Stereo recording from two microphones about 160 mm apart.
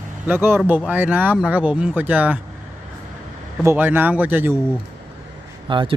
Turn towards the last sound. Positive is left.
turn(degrees=-30)  # may be behind; listen again after turning